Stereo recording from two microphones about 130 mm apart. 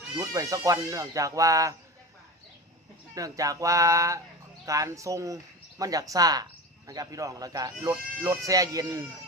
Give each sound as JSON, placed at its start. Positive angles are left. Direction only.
{"t": 0.2, "sound": "speech", "side_deg": -25}
{"t": 3.2, "sound": "speech", "side_deg": -25}